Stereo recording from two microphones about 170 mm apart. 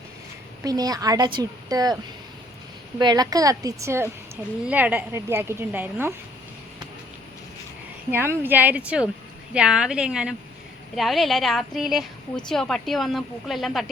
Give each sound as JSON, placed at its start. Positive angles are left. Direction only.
{"t": 0.6, "sound": "a woman's voice", "side_deg": -20}
{"t": 3.0, "sound": "a woman's voice", "side_deg": -25}
{"t": 8.1, "sound": "a woman's voice", "side_deg": -10}